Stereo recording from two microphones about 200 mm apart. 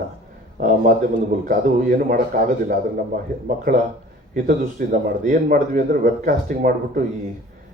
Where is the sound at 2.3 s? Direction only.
40° right (ahead or behind).